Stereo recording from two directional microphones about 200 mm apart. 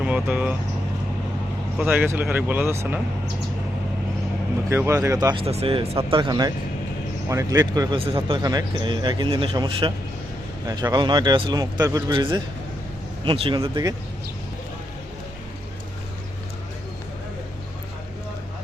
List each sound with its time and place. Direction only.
0.0 s speech: 5° right (ahead or behind)
1.8 s speech: 5° right (ahead or behind)
4.7 s speech: 15° right (ahead or behind)